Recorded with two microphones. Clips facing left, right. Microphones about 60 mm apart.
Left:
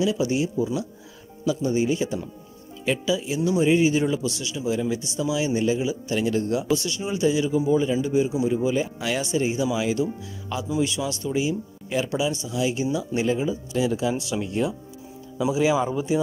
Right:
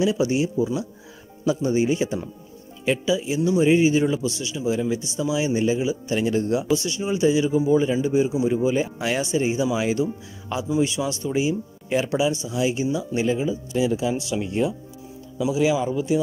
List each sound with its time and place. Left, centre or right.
0.0 s speech: right
0.6 s speech: centre
1.4 s speech: right; by 3.3 s centre
3.3 s speech: centre
6.7 s speech: centre
12.9 s speech: centre
14.4 s speech: centre
15.3 s speech: centre